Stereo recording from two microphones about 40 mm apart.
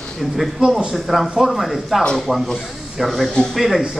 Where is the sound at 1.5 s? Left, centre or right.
Centre.